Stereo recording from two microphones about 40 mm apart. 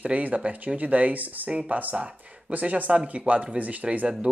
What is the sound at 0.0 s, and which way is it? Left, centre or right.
Speech, right.